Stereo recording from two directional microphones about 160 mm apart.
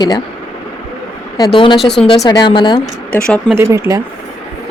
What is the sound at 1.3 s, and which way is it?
Speech, 25° left (ahead or behind).